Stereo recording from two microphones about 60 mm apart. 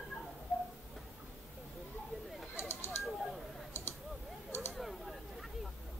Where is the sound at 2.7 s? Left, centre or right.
Left.